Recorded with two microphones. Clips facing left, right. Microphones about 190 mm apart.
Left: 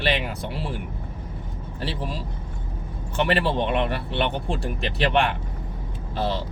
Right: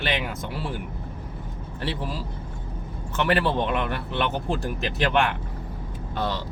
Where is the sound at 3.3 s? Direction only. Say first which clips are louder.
Even; 25° left (ahead or behind).